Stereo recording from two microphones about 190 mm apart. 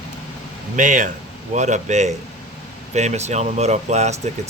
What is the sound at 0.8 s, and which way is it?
A man's voice, 40° right (ahead or behind).